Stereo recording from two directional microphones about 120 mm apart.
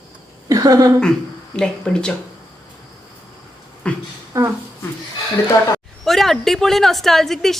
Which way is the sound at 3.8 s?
10° left (ahead or behind).